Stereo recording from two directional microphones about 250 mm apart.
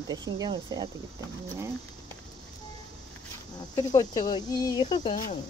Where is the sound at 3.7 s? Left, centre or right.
Centre.